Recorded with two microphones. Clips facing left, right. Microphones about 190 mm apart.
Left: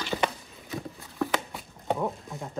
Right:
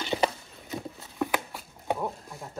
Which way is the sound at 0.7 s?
Centre (ahead or behind).